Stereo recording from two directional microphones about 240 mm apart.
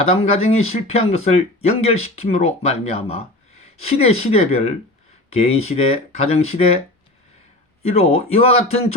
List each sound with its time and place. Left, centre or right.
0.1 s speech: left